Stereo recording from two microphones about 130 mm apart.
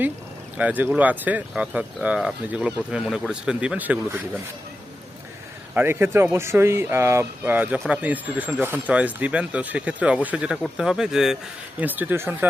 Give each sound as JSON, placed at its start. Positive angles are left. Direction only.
{"t": 0.5, "sound": "speech", "side_deg": -15}
{"t": 5.7, "sound": "speech", "side_deg": -15}